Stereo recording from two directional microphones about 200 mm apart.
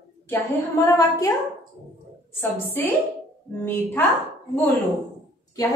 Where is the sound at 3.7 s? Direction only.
10° left (ahead or behind).